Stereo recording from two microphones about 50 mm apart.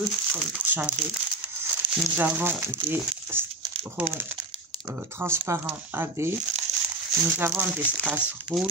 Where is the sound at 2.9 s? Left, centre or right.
Right.